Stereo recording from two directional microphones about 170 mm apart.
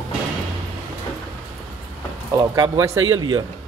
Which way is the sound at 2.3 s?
20° right (ahead or behind).